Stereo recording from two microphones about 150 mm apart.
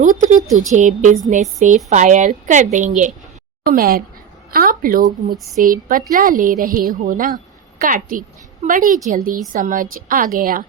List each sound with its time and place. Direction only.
0.0 s a woman's voice: 55° right (ahead or behind)
3.7 s a woman's voice: 75° right (ahead or behind)